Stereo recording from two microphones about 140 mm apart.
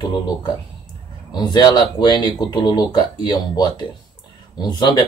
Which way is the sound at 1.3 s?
30° left (ahead or behind).